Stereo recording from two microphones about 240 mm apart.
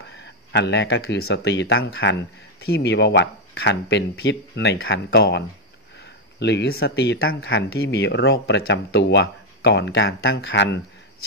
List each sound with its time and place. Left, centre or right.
0.5 s speech: left
6.4 s speech: left